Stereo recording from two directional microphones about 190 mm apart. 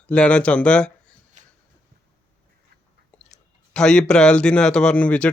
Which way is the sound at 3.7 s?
5° left (ahead or behind).